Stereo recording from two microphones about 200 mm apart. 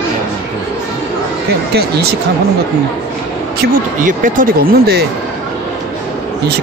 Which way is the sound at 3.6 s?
40° right (ahead or behind).